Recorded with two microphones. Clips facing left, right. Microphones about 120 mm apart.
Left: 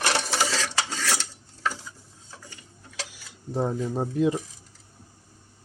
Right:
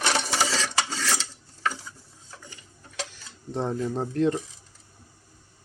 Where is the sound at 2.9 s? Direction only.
5° left (ahead or behind).